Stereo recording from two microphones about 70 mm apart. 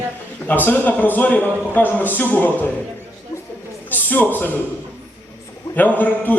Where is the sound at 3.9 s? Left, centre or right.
Left.